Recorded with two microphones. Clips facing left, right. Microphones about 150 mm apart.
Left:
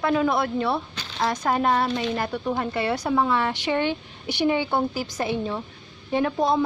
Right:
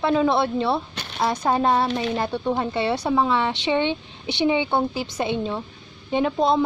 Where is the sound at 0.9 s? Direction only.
65° right (ahead or behind).